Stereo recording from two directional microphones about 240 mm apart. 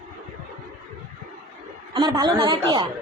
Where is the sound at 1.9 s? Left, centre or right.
Centre.